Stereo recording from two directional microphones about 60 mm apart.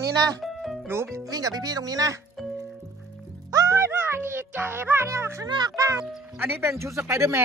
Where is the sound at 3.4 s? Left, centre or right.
Right.